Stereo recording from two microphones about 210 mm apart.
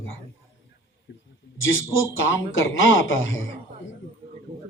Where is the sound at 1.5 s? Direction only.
65° left (ahead or behind).